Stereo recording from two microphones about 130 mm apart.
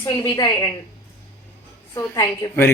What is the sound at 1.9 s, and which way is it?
Speech, 25° left (ahead or behind).